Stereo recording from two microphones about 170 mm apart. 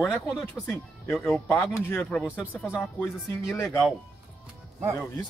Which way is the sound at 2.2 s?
5° right (ahead or behind).